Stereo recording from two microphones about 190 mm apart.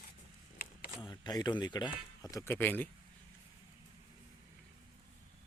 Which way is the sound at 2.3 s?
10° left (ahead or behind).